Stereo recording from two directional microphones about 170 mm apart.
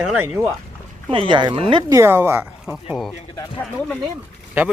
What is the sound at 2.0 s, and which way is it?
Speech, 15° right (ahead or behind).